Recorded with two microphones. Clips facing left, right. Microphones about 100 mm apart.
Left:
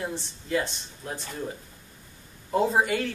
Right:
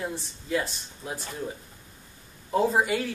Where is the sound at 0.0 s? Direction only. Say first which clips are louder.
Even; centre (ahead or behind).